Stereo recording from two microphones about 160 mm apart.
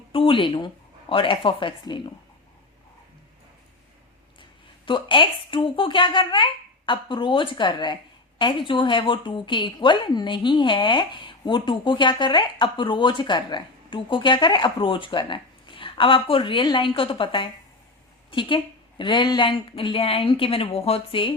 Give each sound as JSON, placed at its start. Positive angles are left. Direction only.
{"t": 0.1, "sound": "a woman's voice", "side_deg": 35}
{"t": 4.9, "sound": "a woman's voice", "side_deg": 30}